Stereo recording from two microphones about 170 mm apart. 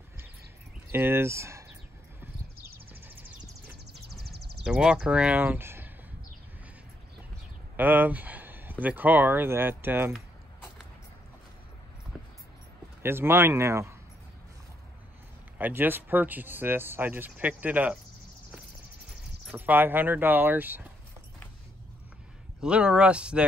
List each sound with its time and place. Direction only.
0.9 s speech: 15° right (ahead or behind)
2.9 s horse: 10° right (ahead or behind)
3.9 s a sound: 75° right (ahead or behind)
4.6 s speech: 5° right (ahead or behind)
7.7 s a sound: 10° right (ahead or behind)
8.8 s speech: 10° right (ahead or behind)
13.0 s speech: 15° right (ahead or behind)
15.5 s speech: 10° right (ahead or behind)
19.5 s speech: 10° right (ahead or behind)
22.6 s speech: 5° right (ahead or behind)